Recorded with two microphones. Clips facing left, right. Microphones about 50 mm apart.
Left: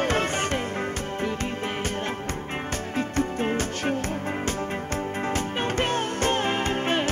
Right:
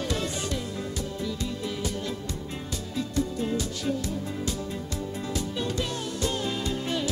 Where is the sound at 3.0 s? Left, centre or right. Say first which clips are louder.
Left 2 dB; left.